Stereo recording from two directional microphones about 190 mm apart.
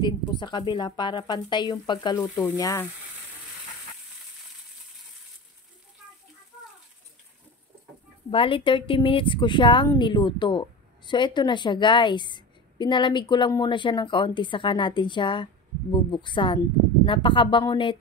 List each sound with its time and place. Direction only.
0.0 s a woman's voice: 25° left (ahead or behind)
8.3 s a woman's voice: 30° left (ahead or behind)